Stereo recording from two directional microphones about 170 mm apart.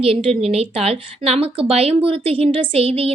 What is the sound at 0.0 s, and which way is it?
A woman's voice, 35° right (ahead or behind).